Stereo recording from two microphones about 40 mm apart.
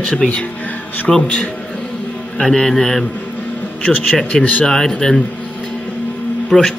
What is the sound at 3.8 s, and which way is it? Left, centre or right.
Speech, left.